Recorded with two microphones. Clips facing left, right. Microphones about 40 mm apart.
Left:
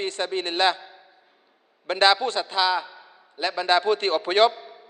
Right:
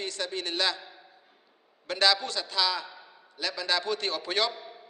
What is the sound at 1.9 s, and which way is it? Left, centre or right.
A man's voice, left.